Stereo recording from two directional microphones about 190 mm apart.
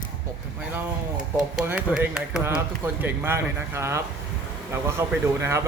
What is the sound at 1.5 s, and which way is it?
Speech, 5° right (ahead or behind).